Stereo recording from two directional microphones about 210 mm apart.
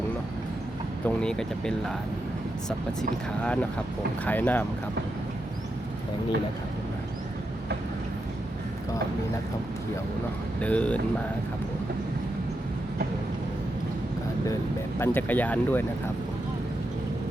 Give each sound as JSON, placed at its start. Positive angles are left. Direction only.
{"t": 1.0, "sound": "speech", "side_deg": 5}
{"t": 10.6, "sound": "speech", "side_deg": 5}
{"t": 14.9, "sound": "speech", "side_deg": 10}